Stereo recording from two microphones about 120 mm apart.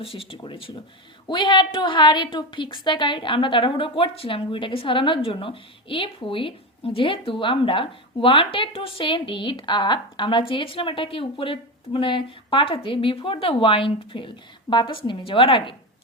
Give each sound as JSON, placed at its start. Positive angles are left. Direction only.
{"t": 0.0, "sound": "a woman's voice", "side_deg": 50}